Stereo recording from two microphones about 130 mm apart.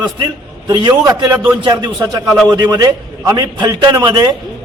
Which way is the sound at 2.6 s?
30° right (ahead or behind).